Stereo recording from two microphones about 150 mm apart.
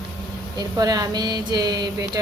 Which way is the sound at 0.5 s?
25° right (ahead or behind).